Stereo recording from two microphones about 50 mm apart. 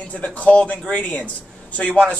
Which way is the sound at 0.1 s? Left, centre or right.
Left.